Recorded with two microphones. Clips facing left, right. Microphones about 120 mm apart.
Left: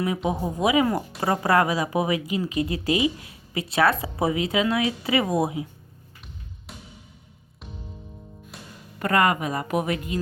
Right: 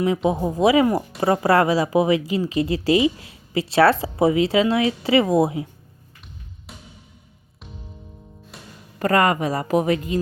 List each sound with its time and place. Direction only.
0.3 s speech: 35° right (ahead or behind)
6.7 s music: centre (ahead or behind)
8.5 s music: centre (ahead or behind)
9.0 s speech: 30° right (ahead or behind)